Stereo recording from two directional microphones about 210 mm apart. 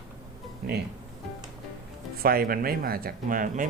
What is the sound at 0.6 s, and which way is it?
Speech, 45° right (ahead or behind).